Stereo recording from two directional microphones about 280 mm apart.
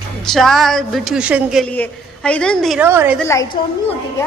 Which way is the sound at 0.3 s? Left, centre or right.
Centre.